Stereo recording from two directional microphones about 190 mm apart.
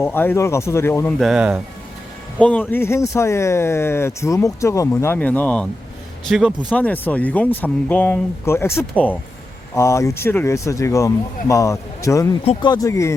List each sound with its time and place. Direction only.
0.0 s speech: 10° left (ahead or behind)
1.2 s speech: 5° right (ahead or behind)
2.4 s speech: 10° left (ahead or behind)